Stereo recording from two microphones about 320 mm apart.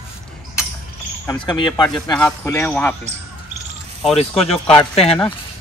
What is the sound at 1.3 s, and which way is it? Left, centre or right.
Speech, centre.